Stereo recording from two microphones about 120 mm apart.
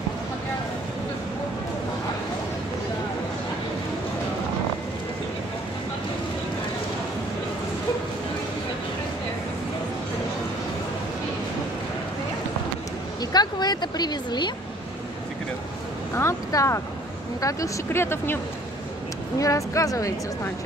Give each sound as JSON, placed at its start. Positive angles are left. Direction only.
{"t": 13.2, "sound": "speech", "side_deg": 35}
{"t": 16.2, "sound": "speech", "side_deg": 25}